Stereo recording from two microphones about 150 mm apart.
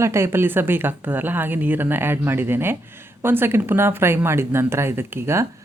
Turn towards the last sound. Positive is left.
turn(degrees=-15)  # may be behind; listen again after turning